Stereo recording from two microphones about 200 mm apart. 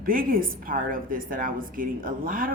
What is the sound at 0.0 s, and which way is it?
Speech, 45° right (ahead or behind).